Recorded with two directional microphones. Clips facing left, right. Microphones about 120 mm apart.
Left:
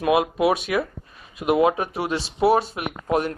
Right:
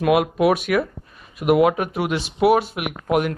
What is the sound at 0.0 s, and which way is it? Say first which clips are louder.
Speech: right 2 dB; 25° left (ahead or behind).